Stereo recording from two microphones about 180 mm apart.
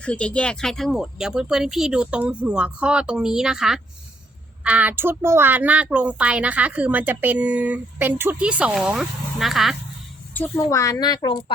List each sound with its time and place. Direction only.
0.0 s a woman's voice: 5° left (ahead or behind)
10.3 s speech: 10° left (ahead or behind)